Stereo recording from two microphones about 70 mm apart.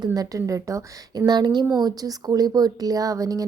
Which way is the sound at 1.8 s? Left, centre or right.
Right.